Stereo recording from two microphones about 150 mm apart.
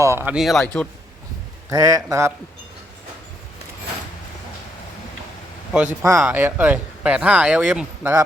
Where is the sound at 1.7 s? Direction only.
25° right (ahead or behind).